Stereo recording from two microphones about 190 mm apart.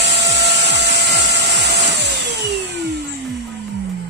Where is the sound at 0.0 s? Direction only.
65° right (ahead or behind).